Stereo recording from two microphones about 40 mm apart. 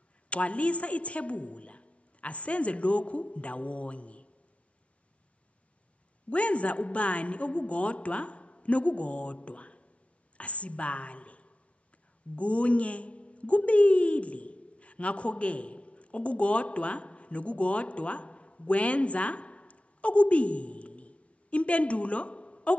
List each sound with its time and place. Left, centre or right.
0.3 s a woman's voice: left
6.3 s a woman's voice: left